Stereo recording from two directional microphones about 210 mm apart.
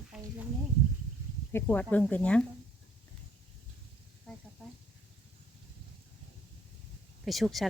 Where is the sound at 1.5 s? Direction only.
5° left (ahead or behind).